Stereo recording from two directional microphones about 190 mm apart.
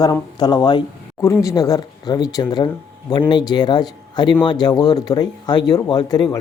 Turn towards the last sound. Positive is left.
turn(degrees=20)  # may be behind; listen again after turning